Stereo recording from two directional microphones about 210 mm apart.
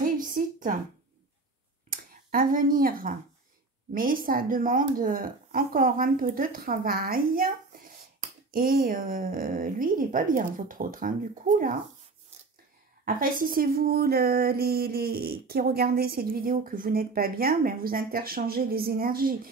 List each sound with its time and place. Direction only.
0.0 s a sound: 40° right (ahead or behind)
1.9 s speech: 40° right (ahead or behind)
13.0 s speech: 40° right (ahead or behind)